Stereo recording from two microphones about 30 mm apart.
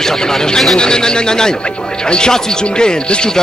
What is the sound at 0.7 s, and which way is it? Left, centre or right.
Speech, left.